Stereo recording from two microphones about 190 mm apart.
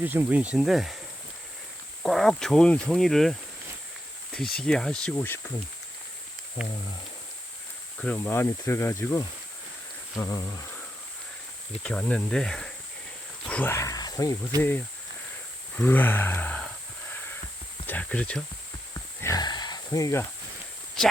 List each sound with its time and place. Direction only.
0.0 s speech: 10° right (ahead or behind)
2.0 s speech: centre (ahead or behind)
7.9 s speech: 5° left (ahead or behind)
11.8 s speech: 5° left (ahead or behind)
15.8 s a sound: 10° left (ahead or behind)
17.8 s speech: 10° left (ahead or behind)
19.2 s speech: 20° left (ahead or behind)